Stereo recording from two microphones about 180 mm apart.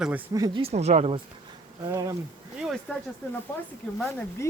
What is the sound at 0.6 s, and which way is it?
Speech, 40° right (ahead or behind).